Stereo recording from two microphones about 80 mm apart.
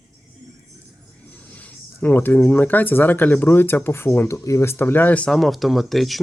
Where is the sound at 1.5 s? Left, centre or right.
Centre.